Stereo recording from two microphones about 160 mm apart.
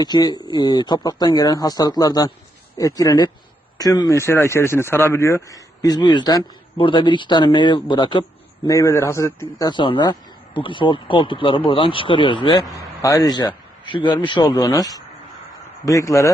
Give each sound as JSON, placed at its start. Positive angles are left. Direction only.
{"t": 0.0, "sound": "speech", "side_deg": 25}